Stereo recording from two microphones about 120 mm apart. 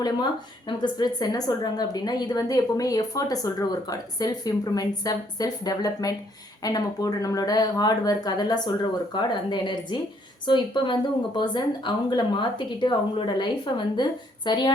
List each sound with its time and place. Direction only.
0.8 s a woman's voice: 35° left (ahead or behind)